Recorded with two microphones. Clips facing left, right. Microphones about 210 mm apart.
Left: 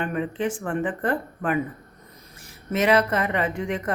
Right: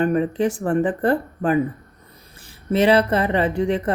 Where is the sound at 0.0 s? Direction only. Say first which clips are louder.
Right 7 dB; 35° right (ahead or behind).